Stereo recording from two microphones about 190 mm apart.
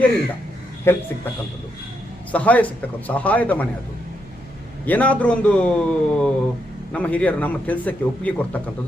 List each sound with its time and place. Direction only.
0.9 s speech: 10° left (ahead or behind)
2.3 s speech: 5° left (ahead or behind)
4.9 s speech: 10° left (ahead or behind)